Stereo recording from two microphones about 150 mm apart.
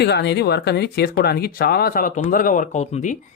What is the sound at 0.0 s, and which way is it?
Speech, 90° left.